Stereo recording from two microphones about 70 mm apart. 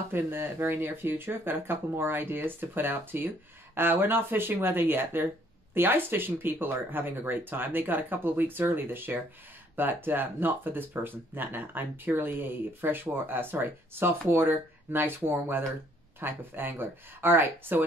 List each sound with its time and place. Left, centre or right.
0.1 s speech: right